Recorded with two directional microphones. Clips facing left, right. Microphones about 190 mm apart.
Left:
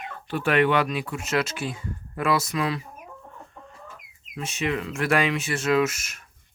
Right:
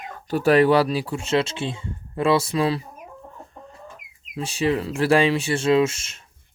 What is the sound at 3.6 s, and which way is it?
Chicken, 35° right (ahead or behind).